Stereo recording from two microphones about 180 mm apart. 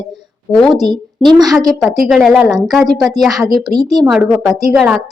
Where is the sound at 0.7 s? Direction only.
25° right (ahead or behind).